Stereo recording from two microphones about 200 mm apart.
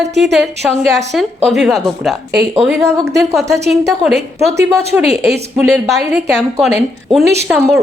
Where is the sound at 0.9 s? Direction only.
Centre (ahead or behind).